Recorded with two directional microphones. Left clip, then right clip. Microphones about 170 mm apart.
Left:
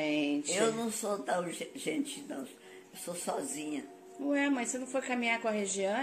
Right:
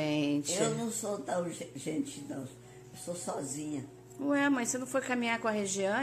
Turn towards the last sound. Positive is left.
turn(degrees=-15)  # may be behind; listen again after turning